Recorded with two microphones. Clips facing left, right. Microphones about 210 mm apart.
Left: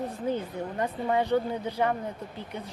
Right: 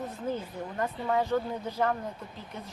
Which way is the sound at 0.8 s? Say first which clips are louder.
Left 2 dB; 15° left (ahead or behind).